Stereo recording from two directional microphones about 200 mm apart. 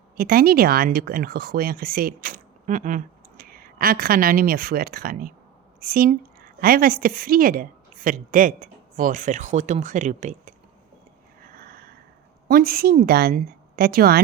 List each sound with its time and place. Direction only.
0.2 s speech: 50° right (ahead or behind)
11.3 s sniff: 45° right (ahead or behind)
12.5 s speech: 45° right (ahead or behind)